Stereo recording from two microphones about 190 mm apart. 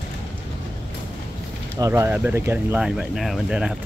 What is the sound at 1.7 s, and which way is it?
Speech, 15° right (ahead or behind).